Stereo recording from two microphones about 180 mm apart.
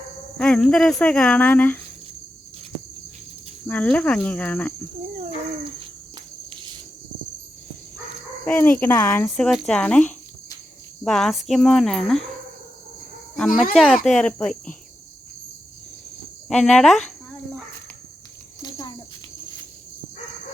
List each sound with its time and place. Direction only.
0.3 s speech: 5° left (ahead or behind)
3.7 s speech: 5° left (ahead or behind)
6.5 s cricket: 25° right (ahead or behind)
8.4 s speech: 10° left (ahead or behind)
13.7 s speech: centre (ahead or behind)
16.5 s speech: 5° left (ahead or behind)
18.6 s a sound: 25° left (ahead or behind)